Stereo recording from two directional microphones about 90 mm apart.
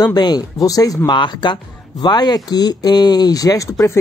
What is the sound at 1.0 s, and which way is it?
Speech, 60° left (ahead or behind).